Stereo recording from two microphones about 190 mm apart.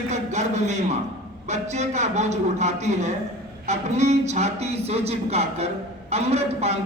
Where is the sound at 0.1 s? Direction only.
40° right (ahead or behind).